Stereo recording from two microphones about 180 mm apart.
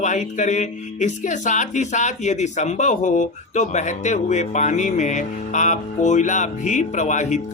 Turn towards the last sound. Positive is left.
turn(degrees=40)  # may be behind; listen again after turning